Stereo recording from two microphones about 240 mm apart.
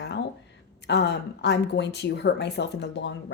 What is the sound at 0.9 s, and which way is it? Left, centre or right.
A woman's voice, left.